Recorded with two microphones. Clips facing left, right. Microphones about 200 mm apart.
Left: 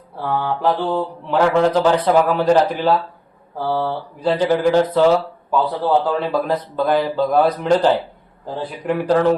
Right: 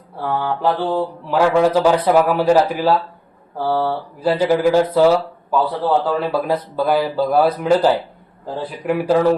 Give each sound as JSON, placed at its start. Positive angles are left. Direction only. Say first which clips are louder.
{"t": 0.2, "sound": "mantra", "louder": "even", "side_deg": 0}
{"t": 5.1, "sound": "a sound", "louder": "even", "side_deg": 0}
{"t": 6.1, "sound": "mantra", "louder": "even", "side_deg": -5}